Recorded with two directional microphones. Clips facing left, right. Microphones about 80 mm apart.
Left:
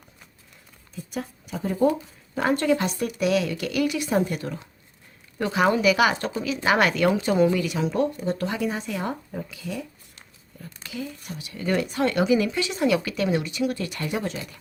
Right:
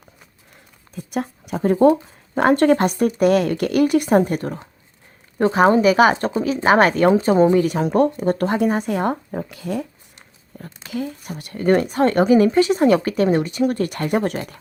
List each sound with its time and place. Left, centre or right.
0.9 s a woman's voice: right
10.9 s a woman's voice: right